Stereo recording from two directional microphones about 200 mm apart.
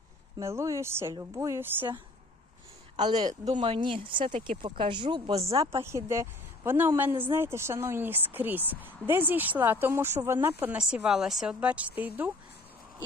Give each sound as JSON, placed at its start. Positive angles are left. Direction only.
{"t": 0.3, "sound": "a woman's voice", "side_deg": -15}
{"t": 5.7, "sound": "a woman's voice", "side_deg": -15}